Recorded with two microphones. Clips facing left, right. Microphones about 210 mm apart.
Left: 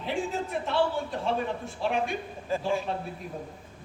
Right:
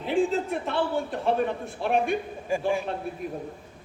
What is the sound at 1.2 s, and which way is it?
Speech, 55° right (ahead or behind).